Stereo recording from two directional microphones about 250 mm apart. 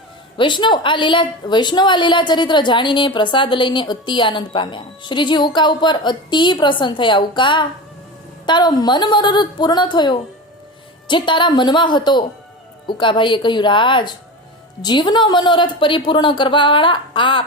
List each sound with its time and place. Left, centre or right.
0.3 s a woman's voice: centre